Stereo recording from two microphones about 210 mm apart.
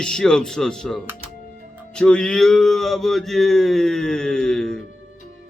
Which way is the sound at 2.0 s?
5° left (ahead or behind).